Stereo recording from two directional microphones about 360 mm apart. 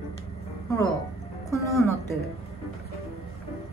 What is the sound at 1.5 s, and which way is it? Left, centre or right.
Music, centre.